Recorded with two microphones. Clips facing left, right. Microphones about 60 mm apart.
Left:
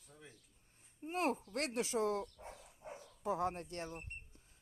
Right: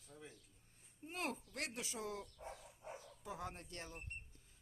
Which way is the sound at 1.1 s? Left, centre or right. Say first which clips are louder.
Left 8 dB; left.